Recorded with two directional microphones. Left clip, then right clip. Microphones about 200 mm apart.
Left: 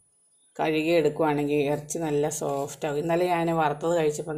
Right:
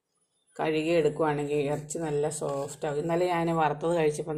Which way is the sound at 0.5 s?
15° left (ahead or behind).